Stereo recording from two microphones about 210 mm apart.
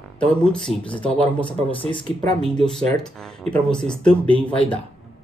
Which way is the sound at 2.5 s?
5° left (ahead or behind).